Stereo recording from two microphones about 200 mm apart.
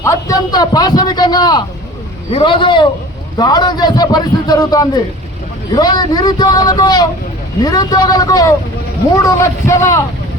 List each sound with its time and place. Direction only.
0.0 s a man's voice: 15° left (ahead or behind)